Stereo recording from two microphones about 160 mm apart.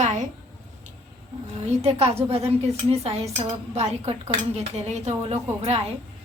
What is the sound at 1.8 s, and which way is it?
A woman's voice, 40° right (ahead or behind).